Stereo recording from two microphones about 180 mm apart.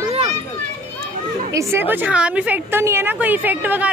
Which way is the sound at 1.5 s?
15° right (ahead or behind).